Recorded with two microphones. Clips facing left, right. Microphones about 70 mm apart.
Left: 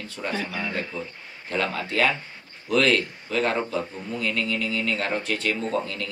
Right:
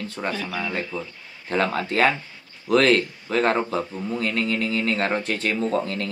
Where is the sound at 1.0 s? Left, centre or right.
Right.